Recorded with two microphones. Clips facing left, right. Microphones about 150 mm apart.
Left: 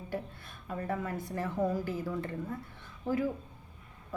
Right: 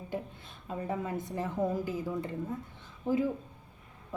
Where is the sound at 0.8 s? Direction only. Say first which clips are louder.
Right 1 dB; 15° right (ahead or behind).